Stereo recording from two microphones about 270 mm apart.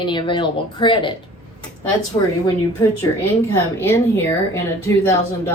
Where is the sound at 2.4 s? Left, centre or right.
Centre.